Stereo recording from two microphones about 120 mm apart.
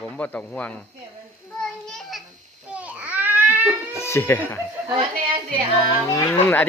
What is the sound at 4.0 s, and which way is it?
Speech, 20° left (ahead or behind).